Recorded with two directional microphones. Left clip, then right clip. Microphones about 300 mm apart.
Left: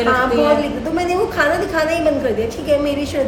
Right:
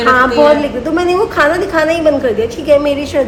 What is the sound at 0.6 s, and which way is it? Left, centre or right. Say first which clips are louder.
A woman's voice: right 5 dB; centre.